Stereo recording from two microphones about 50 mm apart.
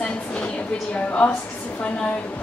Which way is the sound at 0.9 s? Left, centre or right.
Left.